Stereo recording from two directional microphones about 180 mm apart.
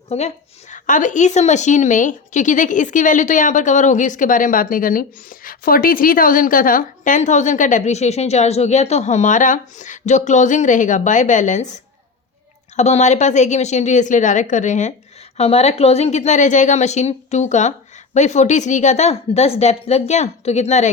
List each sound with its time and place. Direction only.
0.1 s a woman's voice: 40° left (ahead or behind)
12.7 s a woman's voice: 40° left (ahead or behind)